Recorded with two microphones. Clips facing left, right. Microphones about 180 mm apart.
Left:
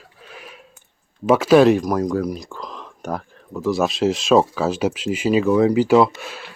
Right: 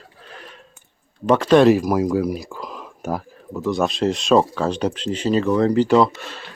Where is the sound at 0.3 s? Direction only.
10° left (ahead or behind).